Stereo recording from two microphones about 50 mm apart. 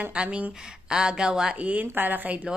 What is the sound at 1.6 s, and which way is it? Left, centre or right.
Speech, right.